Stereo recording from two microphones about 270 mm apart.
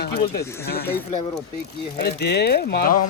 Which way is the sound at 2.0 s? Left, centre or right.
Left.